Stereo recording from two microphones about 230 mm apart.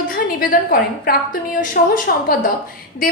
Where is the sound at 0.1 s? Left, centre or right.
Left.